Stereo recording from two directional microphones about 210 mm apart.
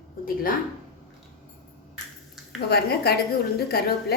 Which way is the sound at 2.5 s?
50° left (ahead or behind).